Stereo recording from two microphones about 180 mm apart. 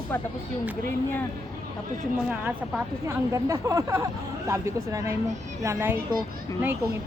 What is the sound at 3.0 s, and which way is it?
Speech, 15° right (ahead or behind).